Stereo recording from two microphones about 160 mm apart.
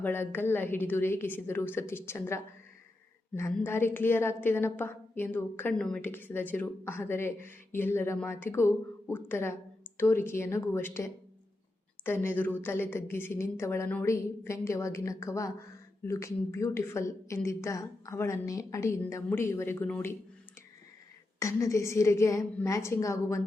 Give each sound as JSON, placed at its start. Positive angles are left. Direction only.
{"t": 0.0, "sound": "a woman's voice", "side_deg": 10}
{"t": 21.3, "sound": "a woman's voice", "side_deg": 20}